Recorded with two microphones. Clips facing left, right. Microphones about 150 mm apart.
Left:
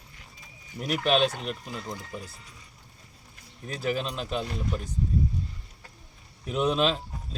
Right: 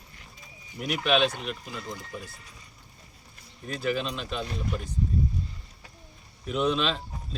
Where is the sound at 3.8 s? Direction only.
40° left (ahead or behind).